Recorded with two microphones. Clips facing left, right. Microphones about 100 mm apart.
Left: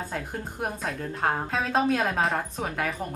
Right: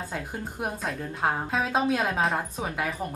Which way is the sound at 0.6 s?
Centre (ahead or behind).